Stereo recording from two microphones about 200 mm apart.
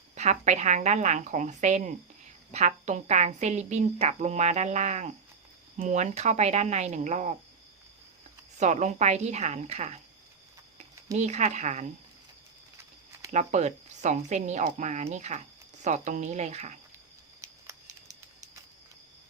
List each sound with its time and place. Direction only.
0.2 s a woman's voice: 35° right (ahead or behind)
8.5 s a woman's voice: 35° right (ahead or behind)
11.2 s a woman's voice: 35° right (ahead or behind)
13.3 s a woman's voice: 35° right (ahead or behind)